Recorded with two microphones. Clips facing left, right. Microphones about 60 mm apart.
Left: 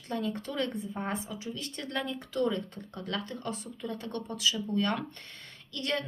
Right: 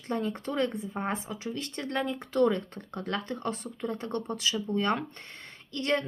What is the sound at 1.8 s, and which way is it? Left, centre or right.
Speech, right.